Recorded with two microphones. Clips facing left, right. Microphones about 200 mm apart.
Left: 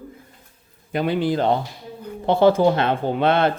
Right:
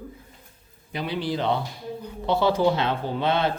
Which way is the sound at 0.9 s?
50° left (ahead or behind).